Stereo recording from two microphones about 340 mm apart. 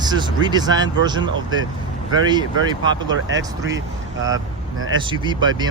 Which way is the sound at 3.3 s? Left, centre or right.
Right.